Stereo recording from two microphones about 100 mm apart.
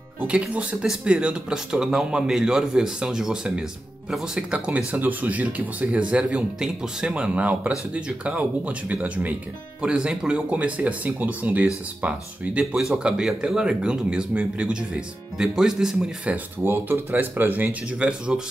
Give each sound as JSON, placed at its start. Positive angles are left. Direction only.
{"t": 0.3, "sound": "speech", "side_deg": -15}
{"t": 16.6, "sound": "speech", "side_deg": -20}